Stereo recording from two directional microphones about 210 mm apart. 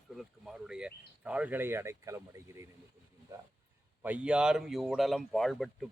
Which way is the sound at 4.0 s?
5° right (ahead or behind).